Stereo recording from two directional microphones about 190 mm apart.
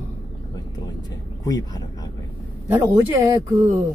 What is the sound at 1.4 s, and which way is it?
Speech, 20° left (ahead or behind).